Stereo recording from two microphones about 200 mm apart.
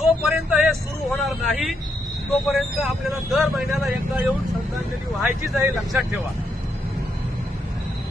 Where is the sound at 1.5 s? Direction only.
Centre (ahead or behind).